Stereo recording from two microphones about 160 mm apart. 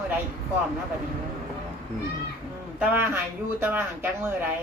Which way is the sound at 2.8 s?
15° right (ahead or behind).